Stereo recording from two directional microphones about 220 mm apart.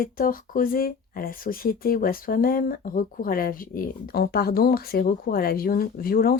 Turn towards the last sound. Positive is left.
turn(degrees=45)  # may be behind; listen again after turning